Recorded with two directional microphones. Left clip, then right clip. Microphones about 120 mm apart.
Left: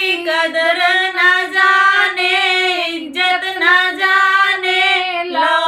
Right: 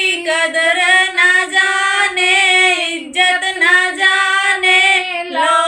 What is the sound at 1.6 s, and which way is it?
Female singing, 15° right (ahead or behind).